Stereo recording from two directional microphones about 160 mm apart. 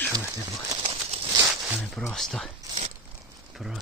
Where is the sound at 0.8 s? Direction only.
40° right (ahead or behind).